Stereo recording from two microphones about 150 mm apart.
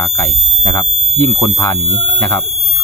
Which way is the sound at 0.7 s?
15° left (ahead or behind).